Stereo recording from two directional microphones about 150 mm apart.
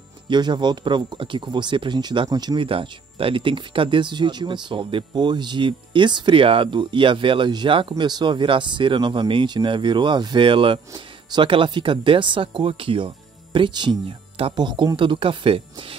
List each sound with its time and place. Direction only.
0.3 s speech: 30° right (ahead or behind)